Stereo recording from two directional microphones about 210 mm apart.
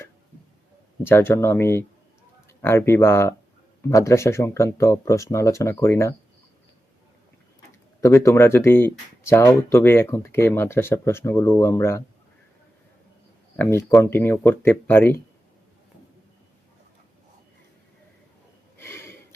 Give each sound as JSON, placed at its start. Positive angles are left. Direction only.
{"t": 1.0, "sound": "speech", "side_deg": 10}
{"t": 8.0, "sound": "speech", "side_deg": 15}
{"t": 13.6, "sound": "speech", "side_deg": 10}
{"t": 18.8, "sound": "a sound", "side_deg": 10}